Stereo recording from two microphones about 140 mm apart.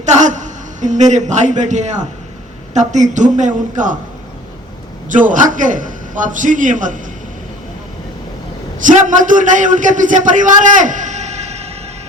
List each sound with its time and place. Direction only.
0.0 s a woman's voice: 60° right (ahead or behind)
5.0 s a man's voice: 65° right (ahead or behind)
8.8 s a man's voice: 65° right (ahead or behind)